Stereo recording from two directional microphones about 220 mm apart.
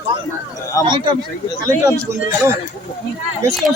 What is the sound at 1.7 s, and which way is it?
Speech, 15° right (ahead or behind).